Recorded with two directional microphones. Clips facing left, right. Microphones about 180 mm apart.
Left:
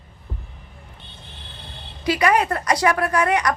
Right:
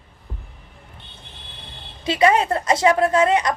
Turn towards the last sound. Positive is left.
turn(degrees=-25)  # may be behind; listen again after turning